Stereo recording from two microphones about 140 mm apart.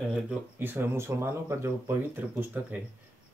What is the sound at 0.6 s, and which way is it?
Speech, 15° right (ahead or behind).